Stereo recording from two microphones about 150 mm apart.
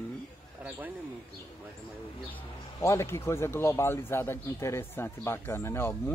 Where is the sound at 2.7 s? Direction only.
20° left (ahead or behind).